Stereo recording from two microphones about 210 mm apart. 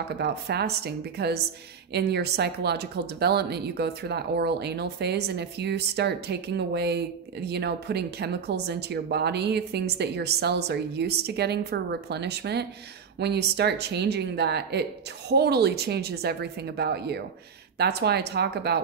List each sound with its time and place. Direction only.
0.1 s speech: 50° right (ahead or behind)